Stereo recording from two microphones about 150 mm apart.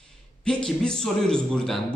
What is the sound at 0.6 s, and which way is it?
Speech, 5° left (ahead or behind).